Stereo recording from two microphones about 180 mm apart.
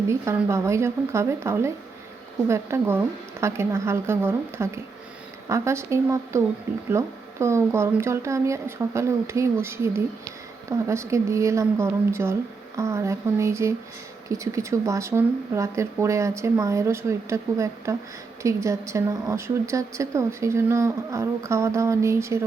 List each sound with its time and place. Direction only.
0.1 s a woman's voice: 15° right (ahead or behind)